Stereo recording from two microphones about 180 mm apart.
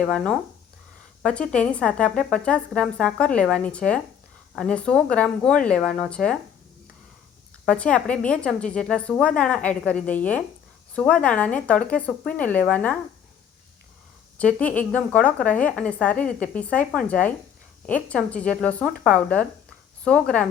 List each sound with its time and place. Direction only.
0.0 s speech: 5° left (ahead or behind)
7.6 s a woman's voice: 5° left (ahead or behind)
14.3 s a woman's voice: 10° left (ahead or behind)